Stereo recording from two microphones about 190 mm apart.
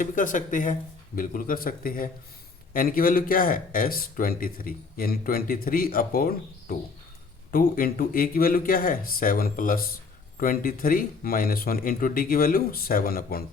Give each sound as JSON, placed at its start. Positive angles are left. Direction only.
{"t": 0.0, "sound": "speech", "side_deg": 45}